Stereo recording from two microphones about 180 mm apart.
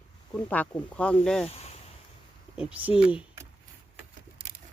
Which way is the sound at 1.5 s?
35° left (ahead or behind).